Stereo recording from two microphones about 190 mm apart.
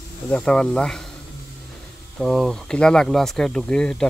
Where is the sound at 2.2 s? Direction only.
5° left (ahead or behind).